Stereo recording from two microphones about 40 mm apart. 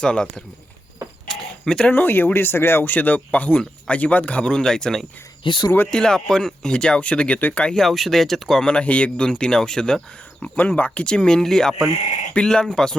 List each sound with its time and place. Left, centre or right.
0.0 s speech: centre
1.3 s mechanisms: centre
1.9 s speech: left
2.9 s speech: left
4.4 s speech: centre
7.8 s speech: centre
8.6 s speech: left
10.5 s speech: left
10.8 s speech: left
11.4 s speech: centre
12.4 s speech: left
12.7 s speech: centre